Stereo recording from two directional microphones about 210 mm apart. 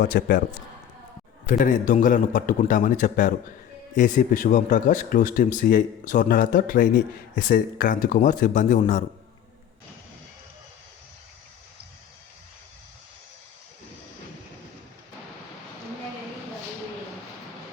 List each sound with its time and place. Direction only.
0.0 s a man's voice: 45° left (ahead or behind)
1.5 s speech: 40° left (ahead or behind)